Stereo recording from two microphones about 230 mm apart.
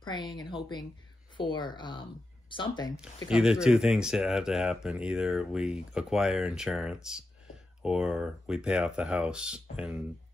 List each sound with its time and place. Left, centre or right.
0.0 s speech: centre
3.3 s speech: centre